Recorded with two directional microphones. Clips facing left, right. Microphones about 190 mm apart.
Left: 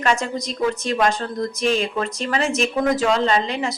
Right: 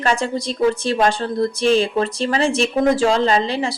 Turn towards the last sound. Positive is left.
turn(degrees=-30)  # may be behind; listen again after turning